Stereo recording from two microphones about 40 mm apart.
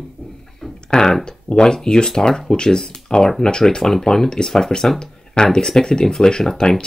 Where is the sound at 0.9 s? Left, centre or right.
Centre.